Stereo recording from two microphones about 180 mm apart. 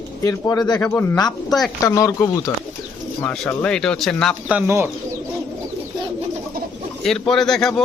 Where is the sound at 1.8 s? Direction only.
20° left (ahead or behind).